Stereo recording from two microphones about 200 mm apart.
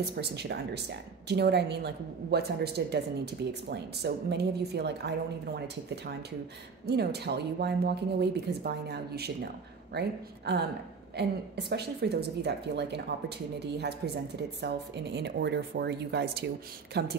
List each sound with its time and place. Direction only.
0.0 s speech: 55° right (ahead or behind)
6.9 s speech: 55° right (ahead or behind)